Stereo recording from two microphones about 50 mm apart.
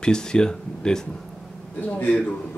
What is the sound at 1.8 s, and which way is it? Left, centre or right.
Speech, left.